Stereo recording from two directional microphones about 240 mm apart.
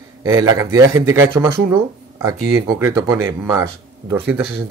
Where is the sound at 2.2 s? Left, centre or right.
Centre.